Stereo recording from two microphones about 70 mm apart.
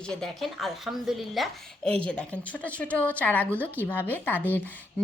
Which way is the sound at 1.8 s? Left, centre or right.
Centre.